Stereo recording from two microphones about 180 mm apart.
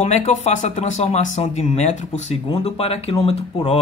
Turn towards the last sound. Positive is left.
turn(degrees=35)  # may be behind; listen again after turning